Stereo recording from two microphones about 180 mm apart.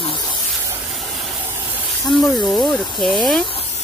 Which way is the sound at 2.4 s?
Centre (ahead or behind).